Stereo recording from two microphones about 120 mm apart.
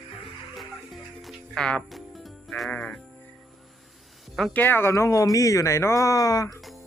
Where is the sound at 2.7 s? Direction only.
15° left (ahead or behind).